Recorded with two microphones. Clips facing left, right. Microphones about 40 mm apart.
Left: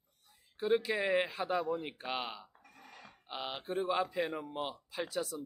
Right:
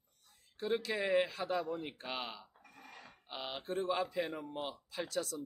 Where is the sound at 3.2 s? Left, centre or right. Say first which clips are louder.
Left 2 dB; centre.